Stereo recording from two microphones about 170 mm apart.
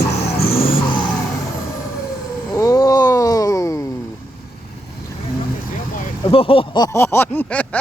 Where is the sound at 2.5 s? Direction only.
20° left (ahead or behind).